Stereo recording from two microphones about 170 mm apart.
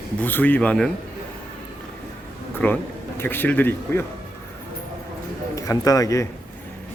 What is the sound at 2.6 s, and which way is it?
Speech, 10° left (ahead or behind).